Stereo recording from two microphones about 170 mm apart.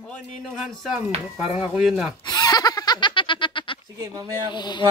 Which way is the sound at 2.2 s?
20° left (ahead or behind).